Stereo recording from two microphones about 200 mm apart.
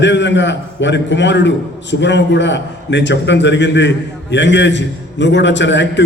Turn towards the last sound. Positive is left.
turn(degrees=65)  # may be behind; listen again after turning